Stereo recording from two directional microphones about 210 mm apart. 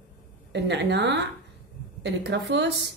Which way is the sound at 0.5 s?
55° right (ahead or behind).